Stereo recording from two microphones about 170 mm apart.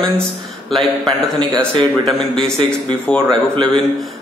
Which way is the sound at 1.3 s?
25° right (ahead or behind).